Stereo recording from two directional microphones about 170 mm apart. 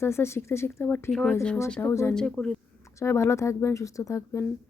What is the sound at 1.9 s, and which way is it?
Speech, 15° left (ahead or behind).